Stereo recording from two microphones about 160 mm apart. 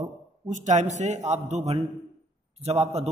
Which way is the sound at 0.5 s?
50° right (ahead or behind).